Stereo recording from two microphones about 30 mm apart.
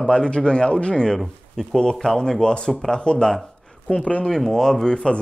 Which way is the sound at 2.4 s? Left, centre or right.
Left.